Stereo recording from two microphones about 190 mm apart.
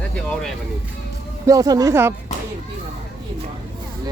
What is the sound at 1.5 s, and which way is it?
Speech, 20° right (ahead or behind).